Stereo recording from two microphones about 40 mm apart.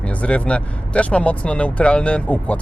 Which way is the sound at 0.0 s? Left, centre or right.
Left.